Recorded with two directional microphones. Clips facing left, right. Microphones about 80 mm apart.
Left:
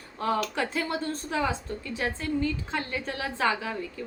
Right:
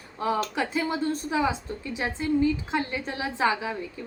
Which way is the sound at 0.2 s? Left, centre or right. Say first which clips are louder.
Right 1 dB; centre.